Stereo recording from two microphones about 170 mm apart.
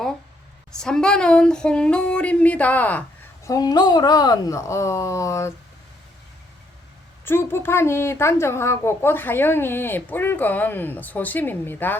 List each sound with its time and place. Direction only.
0.7 s a sound: 5° left (ahead or behind)
3.4 s speech: 20° left (ahead or behind)
7.3 s a woman's voice: 15° left (ahead or behind)